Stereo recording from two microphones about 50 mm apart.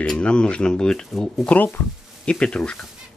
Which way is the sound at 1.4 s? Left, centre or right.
Left.